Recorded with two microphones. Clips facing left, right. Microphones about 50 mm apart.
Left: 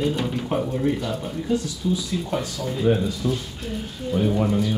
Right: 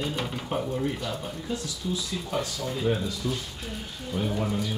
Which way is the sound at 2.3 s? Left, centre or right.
Centre.